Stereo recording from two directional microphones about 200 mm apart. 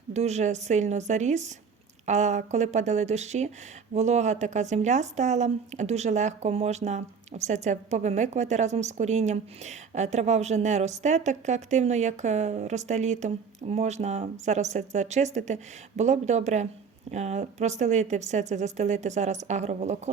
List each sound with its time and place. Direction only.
0.1 s speech: 35° right (ahead or behind)